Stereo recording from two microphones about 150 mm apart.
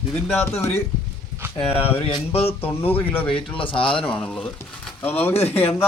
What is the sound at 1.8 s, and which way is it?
Speech, 40° left (ahead or behind).